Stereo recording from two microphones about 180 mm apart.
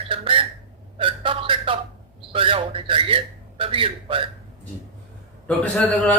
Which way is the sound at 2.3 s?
30° right (ahead or behind).